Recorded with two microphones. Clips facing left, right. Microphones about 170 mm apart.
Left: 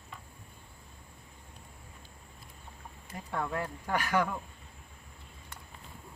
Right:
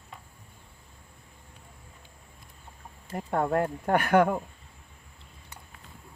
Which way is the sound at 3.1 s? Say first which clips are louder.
Right 9 dB; 50° right (ahead or behind).